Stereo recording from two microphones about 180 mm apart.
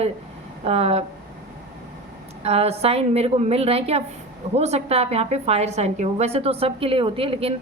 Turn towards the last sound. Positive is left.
turn(degrees=-30)  # may be behind; listen again after turning